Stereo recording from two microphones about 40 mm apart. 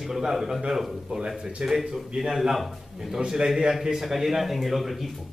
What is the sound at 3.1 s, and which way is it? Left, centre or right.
A man's voice, centre.